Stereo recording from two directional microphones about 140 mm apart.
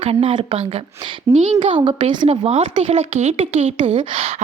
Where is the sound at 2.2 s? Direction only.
50° right (ahead or behind).